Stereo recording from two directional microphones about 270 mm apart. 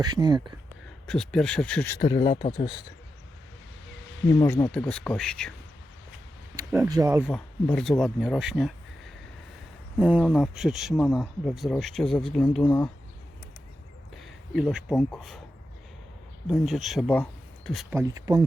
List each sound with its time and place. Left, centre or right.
0.0 s speech: centre
1.0 s speech: centre
4.4 s speech: centre
6.6 s speech: centre
14.2 s speech: centre
16.5 s speech: centre
17.9 s speech: centre